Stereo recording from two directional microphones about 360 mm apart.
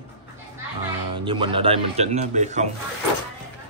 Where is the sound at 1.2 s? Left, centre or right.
Centre.